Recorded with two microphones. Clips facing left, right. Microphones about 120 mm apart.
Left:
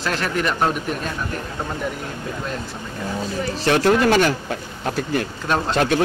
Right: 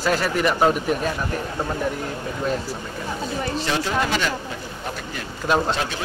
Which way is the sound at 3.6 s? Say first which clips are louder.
Left 10 dB; 60° left (ahead or behind).